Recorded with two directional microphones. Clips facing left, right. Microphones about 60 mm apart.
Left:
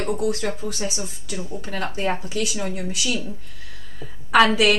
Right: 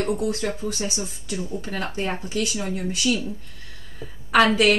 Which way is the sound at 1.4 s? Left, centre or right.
Centre.